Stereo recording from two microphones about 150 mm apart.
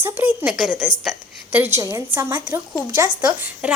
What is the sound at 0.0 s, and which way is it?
A woman's voice, 15° right (ahead or behind).